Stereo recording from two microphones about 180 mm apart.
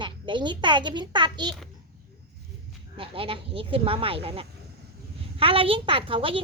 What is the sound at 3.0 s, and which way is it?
Speech, 30° right (ahead or behind).